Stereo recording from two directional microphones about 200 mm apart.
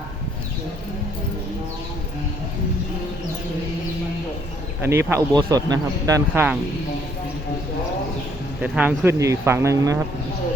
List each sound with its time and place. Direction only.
4.9 s speech: 10° right (ahead or behind)
8.6 s speech: 5° right (ahead or behind)